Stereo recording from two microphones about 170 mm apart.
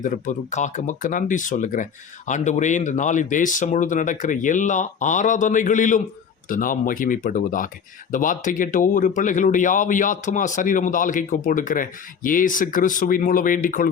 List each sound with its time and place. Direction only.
0.0 s speech: 45° left (ahead or behind)